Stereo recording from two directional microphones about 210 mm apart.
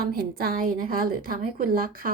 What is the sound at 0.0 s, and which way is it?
A woman's voice, 45° right (ahead or behind).